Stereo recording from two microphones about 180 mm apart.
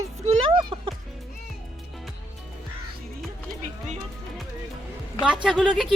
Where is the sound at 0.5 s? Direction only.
25° right (ahead or behind).